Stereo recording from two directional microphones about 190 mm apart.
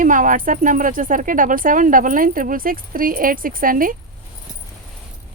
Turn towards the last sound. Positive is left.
turn(degrees=-45)  # may be behind; listen again after turning